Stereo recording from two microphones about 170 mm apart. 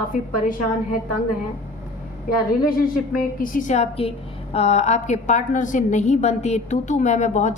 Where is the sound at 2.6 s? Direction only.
55° left (ahead or behind).